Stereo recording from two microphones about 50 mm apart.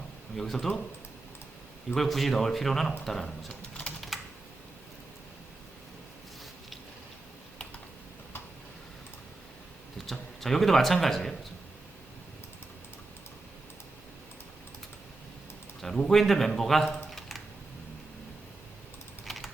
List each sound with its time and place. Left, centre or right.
0.3 s speech: centre
2.0 s speech: centre
3.5 s typing: left
10.1 s speech: centre
15.8 s speech: centre
19.2 s typing: centre